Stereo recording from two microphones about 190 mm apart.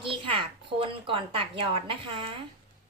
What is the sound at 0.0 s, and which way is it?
A woman's voice, 30° right (ahead or behind).